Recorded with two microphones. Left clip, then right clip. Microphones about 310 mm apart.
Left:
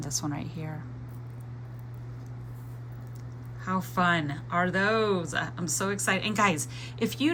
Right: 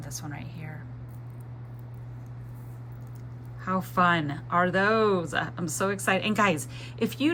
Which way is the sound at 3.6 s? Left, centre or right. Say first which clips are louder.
Right 3 dB; centre.